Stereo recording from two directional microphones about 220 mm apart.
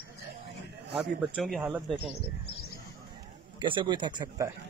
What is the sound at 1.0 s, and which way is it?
A man's voice, centre (ahead or behind).